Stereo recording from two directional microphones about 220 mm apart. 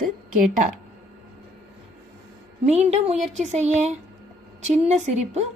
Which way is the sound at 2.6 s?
30° right (ahead or behind).